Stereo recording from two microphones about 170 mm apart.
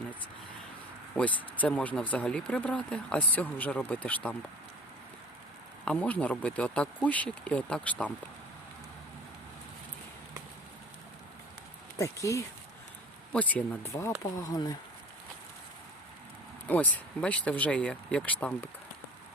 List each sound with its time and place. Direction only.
1.1 s speech: 10° left (ahead or behind)
5.8 s speech: 10° left (ahead or behind)
11.9 s speech: 20° left (ahead or behind)
16.6 s speech: 10° left (ahead or behind)